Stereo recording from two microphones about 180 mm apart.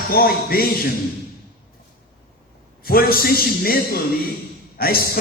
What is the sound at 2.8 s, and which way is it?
Speech, 55° left (ahead or behind).